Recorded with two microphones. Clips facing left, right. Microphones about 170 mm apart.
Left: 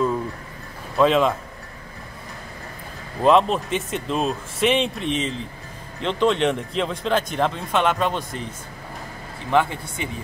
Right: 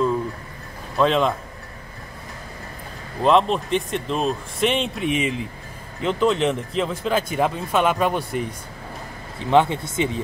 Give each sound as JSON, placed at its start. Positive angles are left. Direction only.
{"t": 0.9, "sound": "speech", "side_deg": 0}
{"t": 3.2, "sound": "speech", "side_deg": 0}
{"t": 9.5, "sound": "speech", "side_deg": -20}